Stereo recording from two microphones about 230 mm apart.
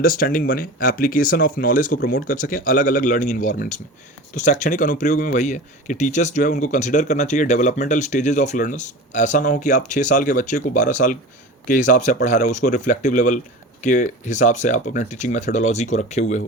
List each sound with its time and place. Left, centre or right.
0.0 s speech: left